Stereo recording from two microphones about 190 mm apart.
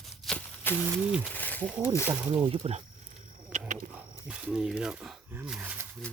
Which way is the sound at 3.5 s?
40° right (ahead or behind).